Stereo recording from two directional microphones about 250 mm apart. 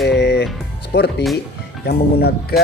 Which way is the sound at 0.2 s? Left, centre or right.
Left.